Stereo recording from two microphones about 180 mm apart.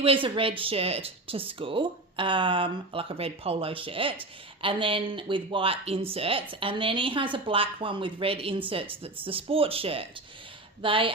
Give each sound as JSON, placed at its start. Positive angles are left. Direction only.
{"t": 0.0, "sound": "speech", "side_deg": -30}